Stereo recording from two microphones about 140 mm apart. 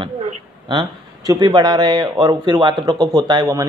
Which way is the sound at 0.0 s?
35° right (ahead or behind).